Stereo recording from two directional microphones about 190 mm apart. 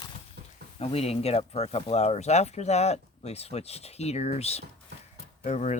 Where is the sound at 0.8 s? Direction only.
30° left (ahead or behind).